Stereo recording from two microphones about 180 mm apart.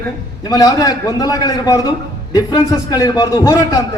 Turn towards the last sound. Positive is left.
turn(degrees=20)  # may be behind; listen again after turning